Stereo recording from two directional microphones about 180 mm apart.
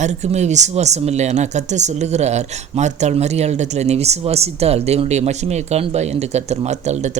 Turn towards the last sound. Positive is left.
turn(degrees=-40)  # may be behind; listen again after turning